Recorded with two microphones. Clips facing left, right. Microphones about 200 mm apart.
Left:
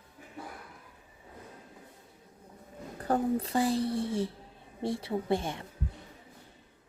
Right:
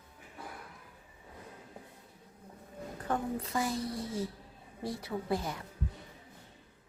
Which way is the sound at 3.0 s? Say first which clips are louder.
Left 6 dB; 35° left (ahead or behind).